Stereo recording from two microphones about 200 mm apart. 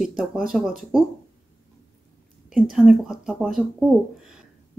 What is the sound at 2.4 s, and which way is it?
Speech, centre (ahead or behind).